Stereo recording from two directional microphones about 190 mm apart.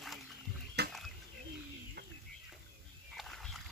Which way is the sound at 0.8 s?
60° right (ahead or behind).